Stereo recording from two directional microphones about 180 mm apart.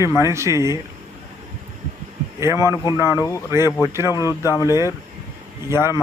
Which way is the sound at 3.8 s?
15° right (ahead or behind).